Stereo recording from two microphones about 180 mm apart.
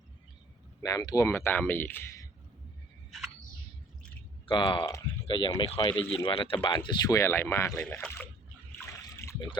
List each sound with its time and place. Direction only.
0.8 s speech: 20° left (ahead or behind)
4.4 s speech: 25° left (ahead or behind); by 8.3 s 10° left (ahead or behind)
9.2 s a sound: 15° left (ahead or behind)